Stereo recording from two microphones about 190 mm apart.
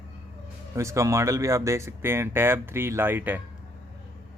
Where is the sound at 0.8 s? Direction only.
15° right (ahead or behind).